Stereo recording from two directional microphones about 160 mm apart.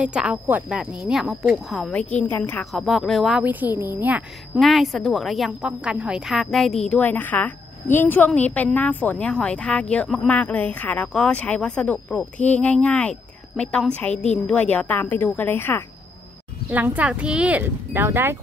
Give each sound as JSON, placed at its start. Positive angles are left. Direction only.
{"t": 0.0, "sound": "a woman's voice", "side_deg": -5}
{"t": 2.7, "sound": "speech", "side_deg": 0}
{"t": 4.6, "sound": "a woman's voice", "side_deg": 0}
{"t": 14.1, "sound": "a woman's voice", "side_deg": 45}
{"t": 14.5, "sound": "a woman's voice", "side_deg": 10}
{"t": 16.7, "sound": "speech", "side_deg": -10}